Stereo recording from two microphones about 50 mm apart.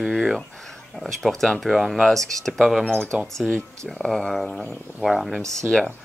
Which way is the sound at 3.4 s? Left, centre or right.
Centre.